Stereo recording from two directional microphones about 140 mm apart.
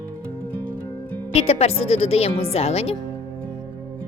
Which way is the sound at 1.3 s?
45° left (ahead or behind).